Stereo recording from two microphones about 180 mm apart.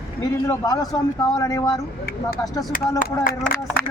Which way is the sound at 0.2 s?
20° left (ahead or behind).